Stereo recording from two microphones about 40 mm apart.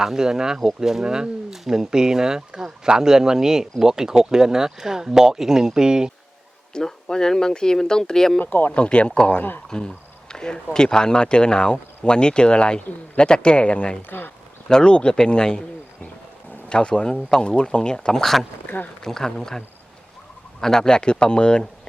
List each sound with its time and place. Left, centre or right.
0.0 s speech: centre
6.7 s speech: centre
8.4 s speech: left
8.7 s speech: left
16.6 s speech: left
18.2 s speech: centre
18.6 s a sound: left
19.0 s speech: centre